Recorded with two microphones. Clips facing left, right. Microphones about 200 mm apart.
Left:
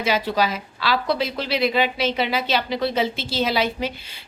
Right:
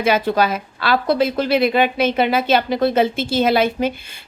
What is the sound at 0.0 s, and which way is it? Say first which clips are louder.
A woman's voice: right 5 dB; 55° right (ahead or behind).